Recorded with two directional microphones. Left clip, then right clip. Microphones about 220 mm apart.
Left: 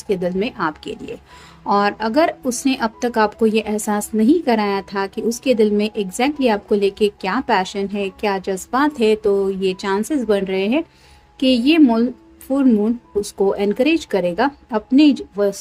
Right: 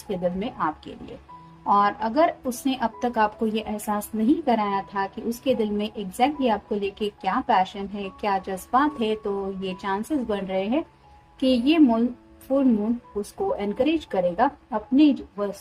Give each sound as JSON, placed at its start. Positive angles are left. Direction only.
{"t": 0.1, "sound": "speech", "side_deg": 35}